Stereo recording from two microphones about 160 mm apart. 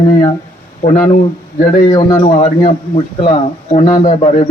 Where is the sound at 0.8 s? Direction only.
55° left (ahead or behind).